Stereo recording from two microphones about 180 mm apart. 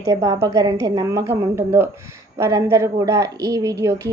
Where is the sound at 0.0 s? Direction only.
20° right (ahead or behind).